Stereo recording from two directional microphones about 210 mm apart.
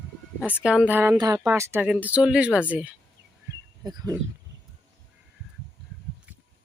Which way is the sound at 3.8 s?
20° right (ahead or behind).